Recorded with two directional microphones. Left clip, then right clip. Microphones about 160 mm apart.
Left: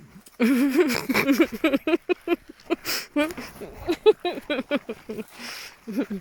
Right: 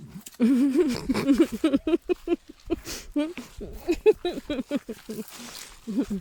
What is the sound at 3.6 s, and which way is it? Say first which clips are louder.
Speech: left 2 dB; 15° right (ahead or behind).